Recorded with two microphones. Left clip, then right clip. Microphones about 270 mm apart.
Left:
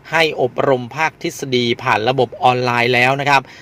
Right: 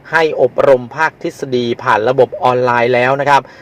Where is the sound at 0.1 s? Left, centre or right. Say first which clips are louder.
Right 4 dB; left.